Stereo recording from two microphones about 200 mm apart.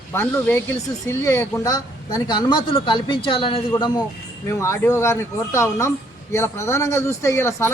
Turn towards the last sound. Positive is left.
turn(degrees=15)  # may be behind; listen again after turning